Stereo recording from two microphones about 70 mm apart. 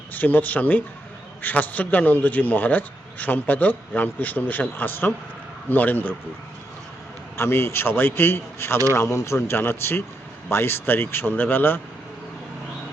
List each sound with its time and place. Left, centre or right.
0.1 s a man's voice: left
7.3 s a man's voice: left